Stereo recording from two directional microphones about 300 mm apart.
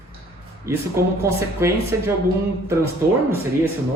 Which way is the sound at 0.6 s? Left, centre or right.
Centre.